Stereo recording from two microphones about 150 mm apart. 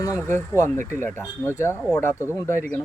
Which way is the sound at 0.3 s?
20° left (ahead or behind).